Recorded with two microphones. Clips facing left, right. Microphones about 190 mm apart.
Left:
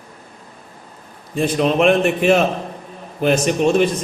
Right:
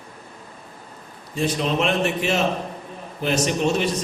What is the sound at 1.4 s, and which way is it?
A man's voice, 55° left (ahead or behind).